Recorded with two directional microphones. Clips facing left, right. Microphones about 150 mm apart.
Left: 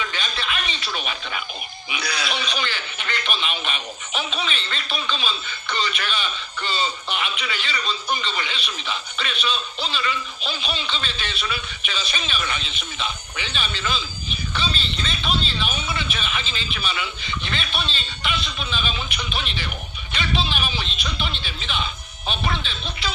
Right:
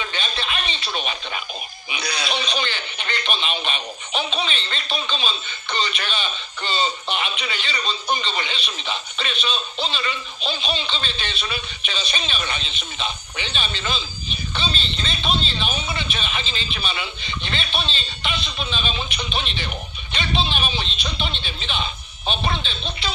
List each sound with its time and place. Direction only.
0.0 s radio: 30° right (ahead or behind)
1.9 s speech: 20° right (ahead or behind)